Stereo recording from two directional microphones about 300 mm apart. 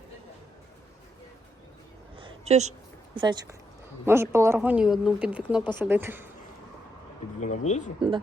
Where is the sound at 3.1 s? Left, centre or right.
Centre.